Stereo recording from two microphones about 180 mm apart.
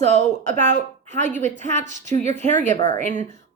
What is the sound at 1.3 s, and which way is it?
A woman's voice, 40° right (ahead or behind).